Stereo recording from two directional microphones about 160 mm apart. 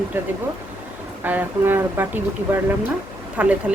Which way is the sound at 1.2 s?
10° right (ahead or behind).